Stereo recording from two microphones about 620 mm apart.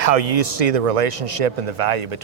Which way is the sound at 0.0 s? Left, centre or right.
Right.